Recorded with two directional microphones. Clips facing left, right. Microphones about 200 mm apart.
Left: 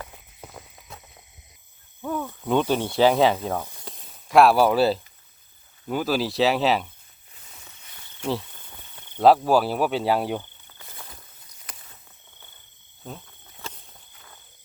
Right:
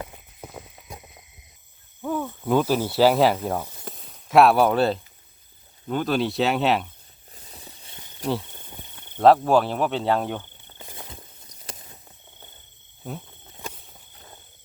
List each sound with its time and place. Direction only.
0.0 s clip-clop: 10° right (ahead or behind)
2.0 s speech: 5° right (ahead or behind)
7.3 s walk: 35° right (ahead or behind)
8.2 s speech: 35° right (ahead or behind)
8.5 s cricket: 20° right (ahead or behind)
9.1 s speech: 5° left (ahead or behind)
10.7 s walk: 25° right (ahead or behind)
13.1 s a sound: 15° right (ahead or behind)